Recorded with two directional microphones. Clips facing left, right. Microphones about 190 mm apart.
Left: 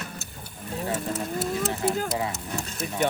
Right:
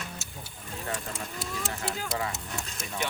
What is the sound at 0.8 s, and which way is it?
Speech, 30° left (ahead or behind).